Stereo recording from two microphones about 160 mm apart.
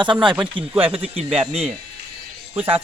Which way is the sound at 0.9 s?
35° right (ahead or behind).